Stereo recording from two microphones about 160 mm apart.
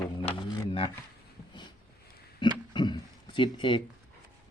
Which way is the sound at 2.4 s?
30° left (ahead or behind).